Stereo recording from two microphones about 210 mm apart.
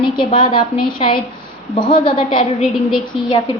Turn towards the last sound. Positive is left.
turn(degrees=20)  # may be behind; listen again after turning